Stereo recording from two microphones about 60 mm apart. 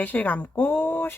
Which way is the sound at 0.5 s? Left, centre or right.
Left.